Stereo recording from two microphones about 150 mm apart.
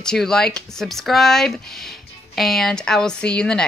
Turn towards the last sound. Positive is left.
turn(degrees=5)  # may be behind; listen again after turning